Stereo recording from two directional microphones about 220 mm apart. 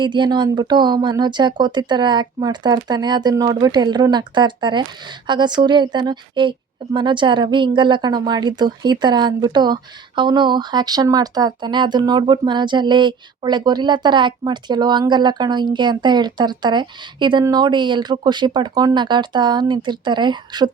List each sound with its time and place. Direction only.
0.0 s speech: 20° right (ahead or behind)